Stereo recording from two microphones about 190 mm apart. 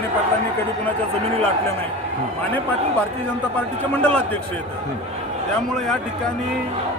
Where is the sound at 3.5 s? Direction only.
10° left (ahead or behind).